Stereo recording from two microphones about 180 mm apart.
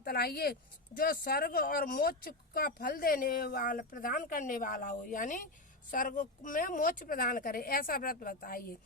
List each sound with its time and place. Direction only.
0.0 s speech: 60° left (ahead or behind)